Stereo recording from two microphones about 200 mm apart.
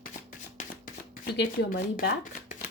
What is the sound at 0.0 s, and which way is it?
Shuffling cards, 40° left (ahead or behind).